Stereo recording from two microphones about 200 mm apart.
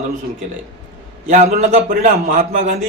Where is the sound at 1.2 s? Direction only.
35° right (ahead or behind).